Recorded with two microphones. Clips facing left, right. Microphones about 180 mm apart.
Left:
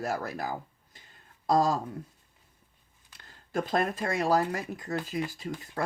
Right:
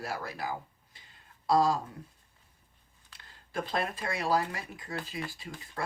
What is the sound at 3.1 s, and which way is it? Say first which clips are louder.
Speech: left 5 dB; 45° left (ahead or behind).